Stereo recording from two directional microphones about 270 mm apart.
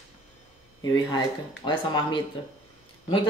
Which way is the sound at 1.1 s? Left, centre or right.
Centre.